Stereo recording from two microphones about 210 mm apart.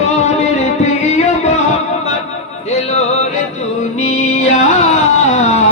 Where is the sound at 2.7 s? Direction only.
30° left (ahead or behind).